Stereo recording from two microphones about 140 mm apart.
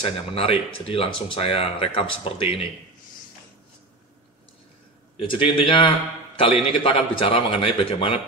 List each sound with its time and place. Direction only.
0.0 s speech: 45° left (ahead or behind)
5.1 s speech: 35° left (ahead or behind)